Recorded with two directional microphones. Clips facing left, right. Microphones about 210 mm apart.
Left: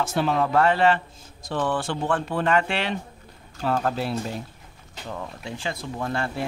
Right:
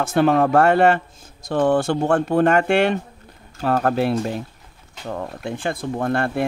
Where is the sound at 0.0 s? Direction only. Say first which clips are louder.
Right 7 dB; 55° right (ahead or behind).